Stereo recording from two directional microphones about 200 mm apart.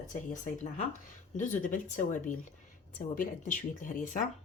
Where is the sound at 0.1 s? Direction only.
40° left (ahead or behind).